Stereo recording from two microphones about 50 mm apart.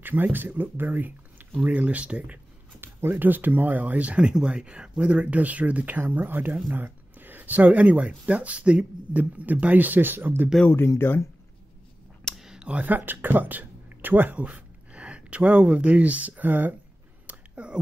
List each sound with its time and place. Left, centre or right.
0.0 s speech: right
2.8 s speech: right
9.1 s speech: right
11.0 s speech: left
12.4 s a sound: centre
12.8 s speech: right
17.3 s a sound: right